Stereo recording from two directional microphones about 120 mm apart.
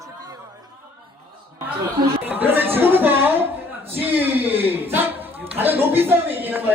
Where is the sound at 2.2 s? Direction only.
15° right (ahead or behind).